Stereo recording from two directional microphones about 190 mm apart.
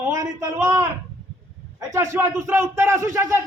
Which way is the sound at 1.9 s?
15° right (ahead or behind).